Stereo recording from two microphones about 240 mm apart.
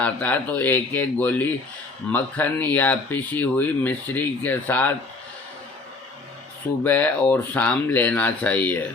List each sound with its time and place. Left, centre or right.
0.0 s speech: centre
6.8 s speech: centre